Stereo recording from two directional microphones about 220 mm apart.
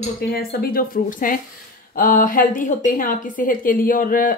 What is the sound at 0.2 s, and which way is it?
A woman's voice, 45° left (ahead or behind).